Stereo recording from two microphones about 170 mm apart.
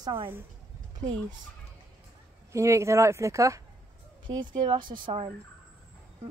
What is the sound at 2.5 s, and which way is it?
A woman's voice, 15° right (ahead or behind).